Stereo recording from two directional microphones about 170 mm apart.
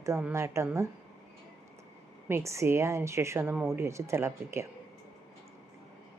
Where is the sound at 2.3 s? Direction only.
15° right (ahead or behind).